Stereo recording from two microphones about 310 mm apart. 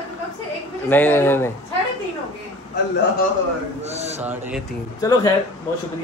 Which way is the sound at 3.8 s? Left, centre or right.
Right.